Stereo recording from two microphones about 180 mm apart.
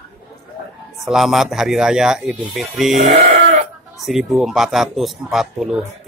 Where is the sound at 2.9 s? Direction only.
40° right (ahead or behind).